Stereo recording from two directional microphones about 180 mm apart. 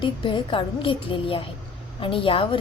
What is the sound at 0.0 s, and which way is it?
A woman's voice, 25° left (ahead or behind).